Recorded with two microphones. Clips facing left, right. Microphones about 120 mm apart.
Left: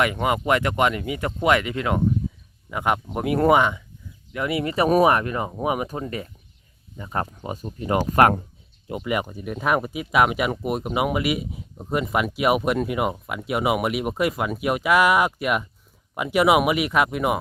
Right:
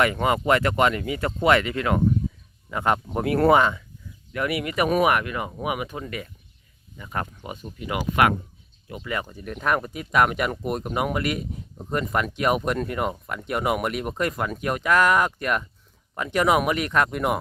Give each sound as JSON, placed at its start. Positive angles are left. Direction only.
{"t": 0.0, "sound": "speech", "side_deg": 15}
{"t": 8.9, "sound": "speech", "side_deg": 20}